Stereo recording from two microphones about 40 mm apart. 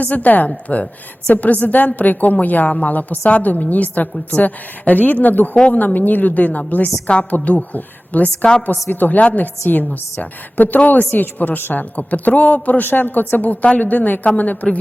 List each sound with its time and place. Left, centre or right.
0.0 s a woman's voice: left
12.8 s speech: left
13.1 s a woman's voice: left